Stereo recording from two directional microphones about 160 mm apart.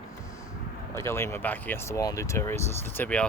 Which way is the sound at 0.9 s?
15° left (ahead or behind).